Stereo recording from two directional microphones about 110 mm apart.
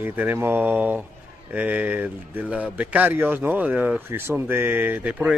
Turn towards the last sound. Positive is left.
turn(degrees=-15)  # may be behind; listen again after turning